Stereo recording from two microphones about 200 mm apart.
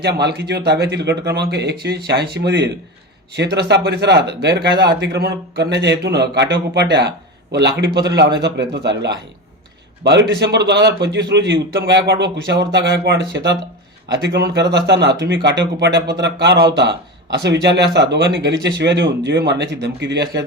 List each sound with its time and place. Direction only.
0.0 s a man's voice: 55° right (ahead or behind)